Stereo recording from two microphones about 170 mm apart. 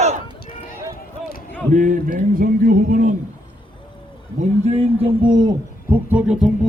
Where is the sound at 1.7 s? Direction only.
50° right (ahead or behind).